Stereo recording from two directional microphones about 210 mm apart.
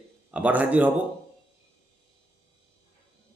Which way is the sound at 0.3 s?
5° right (ahead or behind).